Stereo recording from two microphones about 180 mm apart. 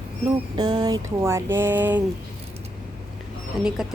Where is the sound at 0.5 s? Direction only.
25° right (ahead or behind).